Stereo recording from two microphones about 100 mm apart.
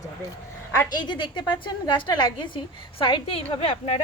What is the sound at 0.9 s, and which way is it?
A woman's voice, 50° left (ahead or behind).